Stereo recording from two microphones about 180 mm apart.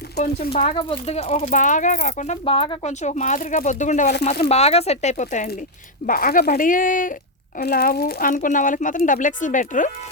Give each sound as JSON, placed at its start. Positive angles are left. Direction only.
{"t": 0.2, "sound": "speech", "side_deg": 60}
{"t": 0.5, "sound": "speech", "side_deg": 35}
{"t": 7.6, "sound": "speech", "side_deg": 60}